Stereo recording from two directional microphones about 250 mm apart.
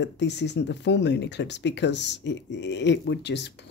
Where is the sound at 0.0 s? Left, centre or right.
Left.